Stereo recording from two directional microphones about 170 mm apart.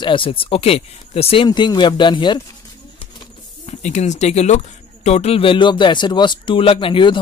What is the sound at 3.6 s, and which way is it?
Speech, 45° left (ahead or behind).